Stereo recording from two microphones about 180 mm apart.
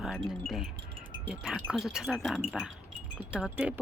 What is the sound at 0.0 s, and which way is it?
Wind chime, centre (ahead or behind).